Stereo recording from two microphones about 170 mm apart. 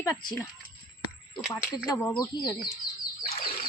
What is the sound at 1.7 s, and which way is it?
Speech, 20° left (ahead or behind).